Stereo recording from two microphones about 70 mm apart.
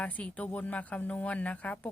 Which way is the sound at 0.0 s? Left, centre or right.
Centre.